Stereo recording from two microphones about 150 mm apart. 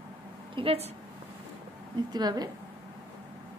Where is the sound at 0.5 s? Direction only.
40° right (ahead or behind).